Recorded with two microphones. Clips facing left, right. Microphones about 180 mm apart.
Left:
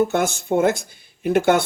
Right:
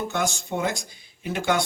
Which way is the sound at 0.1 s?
55° left (ahead or behind).